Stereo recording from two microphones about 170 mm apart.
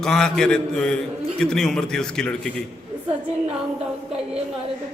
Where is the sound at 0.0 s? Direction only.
5° left (ahead or behind).